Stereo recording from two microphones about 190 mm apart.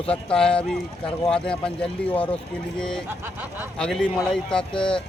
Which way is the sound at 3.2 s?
10° right (ahead or behind).